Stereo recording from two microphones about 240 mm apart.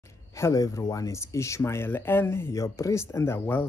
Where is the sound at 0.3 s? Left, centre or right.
Centre.